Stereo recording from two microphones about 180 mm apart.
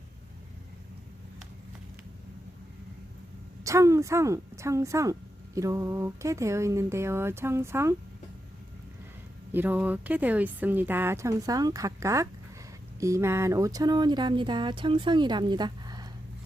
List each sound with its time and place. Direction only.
3.6 s speech: 15° right (ahead or behind)
9.5 s speech: 10° right (ahead or behind)